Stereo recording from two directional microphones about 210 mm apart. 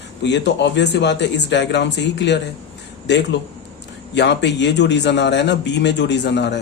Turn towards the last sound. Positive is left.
turn(degrees=55)  # may be behind; listen again after turning